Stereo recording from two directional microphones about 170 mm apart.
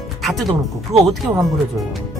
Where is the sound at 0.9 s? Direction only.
40° right (ahead or behind).